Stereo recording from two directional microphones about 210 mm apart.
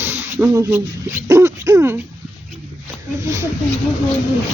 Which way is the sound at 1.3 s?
15° right (ahead or behind).